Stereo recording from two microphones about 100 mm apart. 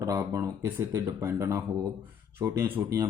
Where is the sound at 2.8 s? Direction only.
35° right (ahead or behind).